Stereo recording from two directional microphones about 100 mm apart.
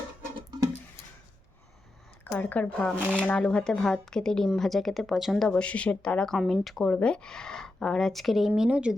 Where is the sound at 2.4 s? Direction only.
15° left (ahead or behind); by 8.9 s 10° right (ahead or behind).